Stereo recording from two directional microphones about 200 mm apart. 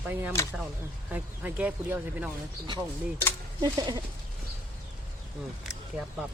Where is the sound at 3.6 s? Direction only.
20° right (ahead or behind).